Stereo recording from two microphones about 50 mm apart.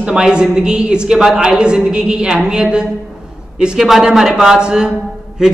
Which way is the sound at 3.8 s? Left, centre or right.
Centre.